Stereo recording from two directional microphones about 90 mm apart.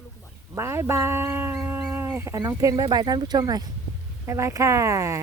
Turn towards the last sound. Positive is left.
turn(degrees=-35)  # may be behind; listen again after turning